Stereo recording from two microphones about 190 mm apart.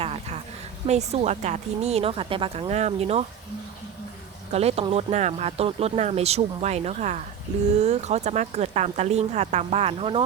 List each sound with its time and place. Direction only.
0.0 s a sound: 30° right (ahead or behind)
0.9 s speech: 35° right (ahead or behind)
4.5 s speech: 35° right (ahead or behind)